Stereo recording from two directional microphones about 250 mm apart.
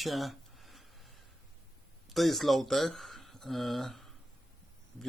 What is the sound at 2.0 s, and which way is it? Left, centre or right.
Speech, centre.